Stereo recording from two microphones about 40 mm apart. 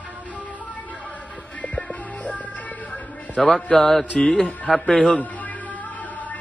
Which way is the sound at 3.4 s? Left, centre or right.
Centre.